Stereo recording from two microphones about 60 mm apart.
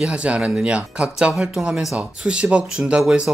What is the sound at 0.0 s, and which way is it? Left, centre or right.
Speech, centre.